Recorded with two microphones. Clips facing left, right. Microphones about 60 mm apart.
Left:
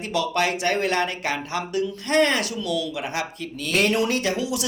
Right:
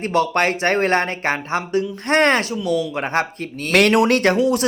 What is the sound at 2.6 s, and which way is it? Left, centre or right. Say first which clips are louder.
Speech: right 7 dB; right.